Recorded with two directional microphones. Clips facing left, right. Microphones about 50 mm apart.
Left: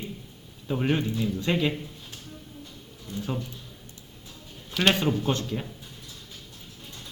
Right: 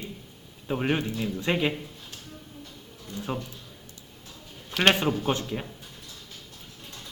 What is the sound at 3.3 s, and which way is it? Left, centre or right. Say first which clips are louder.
Speech: right 1 dB; right.